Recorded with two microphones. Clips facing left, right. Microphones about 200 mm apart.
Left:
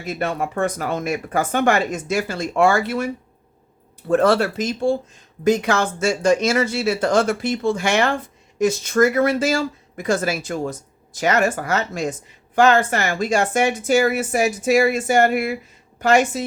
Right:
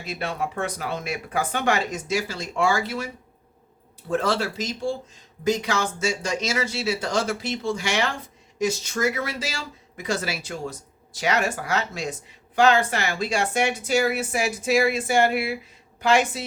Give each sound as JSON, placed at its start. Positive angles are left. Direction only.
{"t": 0.0, "sound": "speech", "side_deg": 50}
{"t": 4.1, "sound": "a woman's voice", "side_deg": 55}